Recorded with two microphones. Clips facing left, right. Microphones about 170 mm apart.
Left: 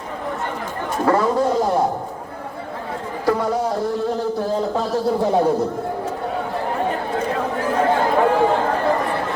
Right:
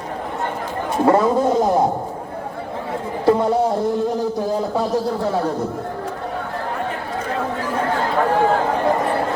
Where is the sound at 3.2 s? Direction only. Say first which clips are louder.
Right 4 dB; 25° right (ahead or behind).